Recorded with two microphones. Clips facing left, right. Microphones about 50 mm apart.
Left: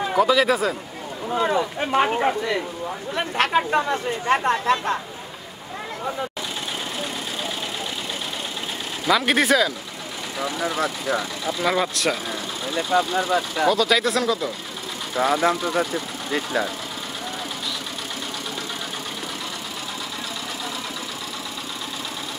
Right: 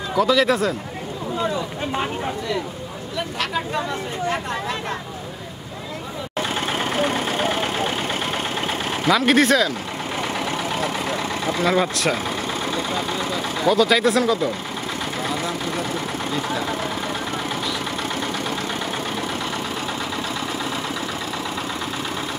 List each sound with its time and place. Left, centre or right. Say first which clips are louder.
0.1 s speech: right 1 dB; centre
1.3 s speech: left 4 dB; left
7.0 s vehicle: right 8 dB; right
9.1 s speech: right 2 dB; centre
10.4 s speech: even; right
11.7 s speech: right 2 dB; centre
12.9 s speech: left 4 dB; left
13.7 s speech: right 4 dB; centre
15.1 s speech: left 9 dB; left